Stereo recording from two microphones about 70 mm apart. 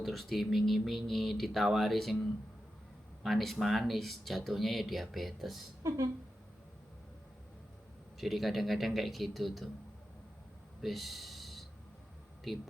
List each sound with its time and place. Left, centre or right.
0.0 s speech: centre
3.2 s speech: centre
5.8 s speech: right
8.2 s speech: centre
10.8 s a sound: centre
12.5 s speech: centre